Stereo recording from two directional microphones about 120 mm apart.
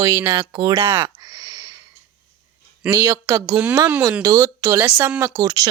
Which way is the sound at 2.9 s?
30° right (ahead or behind).